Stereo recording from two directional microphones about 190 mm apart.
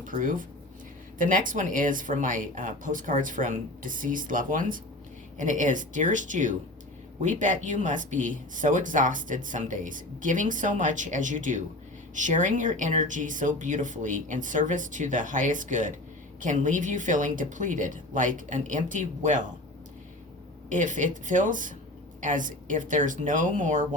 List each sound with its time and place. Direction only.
0.0 s speech: 45° right (ahead or behind)
20.7 s speech: 40° right (ahead or behind)